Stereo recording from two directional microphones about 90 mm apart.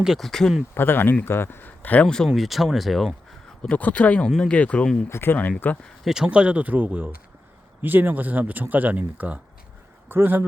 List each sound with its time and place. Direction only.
0.0 s speech: centre (ahead or behind)
0.7 s speech: 25° left (ahead or behind)
2.0 s speech: 5° left (ahead or behind)
3.6 s speech: 15° left (ahead or behind)
5.0 s speech: 25° left (ahead or behind)
6.2 s speech: 15° right (ahead or behind)